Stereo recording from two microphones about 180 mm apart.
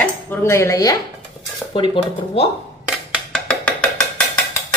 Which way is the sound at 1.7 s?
30° left (ahead or behind).